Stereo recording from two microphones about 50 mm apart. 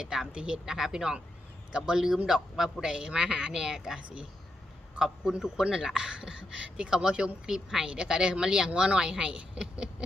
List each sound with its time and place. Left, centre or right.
0.0 s speech: centre